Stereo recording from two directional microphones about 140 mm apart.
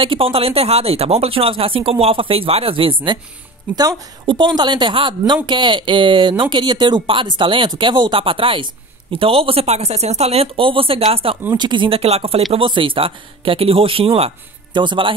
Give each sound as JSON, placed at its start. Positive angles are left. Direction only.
{"t": 0.0, "sound": "a woman's voice", "side_deg": -40}
{"t": 11.5, "sound": "a woman's voice", "side_deg": -35}